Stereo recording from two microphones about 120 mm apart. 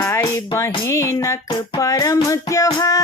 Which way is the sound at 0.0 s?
20° left (ahead or behind).